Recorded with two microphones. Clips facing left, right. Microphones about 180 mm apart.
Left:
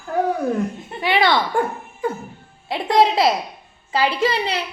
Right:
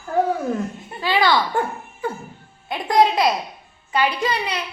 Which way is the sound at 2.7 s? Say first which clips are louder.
Left 1 dB; 25° left (ahead or behind).